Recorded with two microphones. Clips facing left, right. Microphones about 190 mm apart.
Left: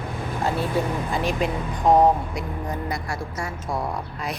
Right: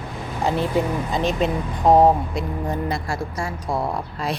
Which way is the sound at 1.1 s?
20° right (ahead or behind).